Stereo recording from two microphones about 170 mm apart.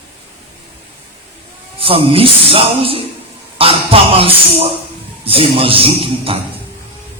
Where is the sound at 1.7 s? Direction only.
35° right (ahead or behind).